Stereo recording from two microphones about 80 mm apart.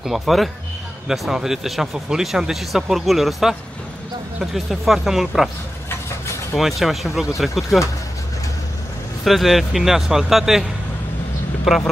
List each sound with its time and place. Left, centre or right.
0.0 s speech: centre
6.5 s speech: centre
9.2 s speech: centre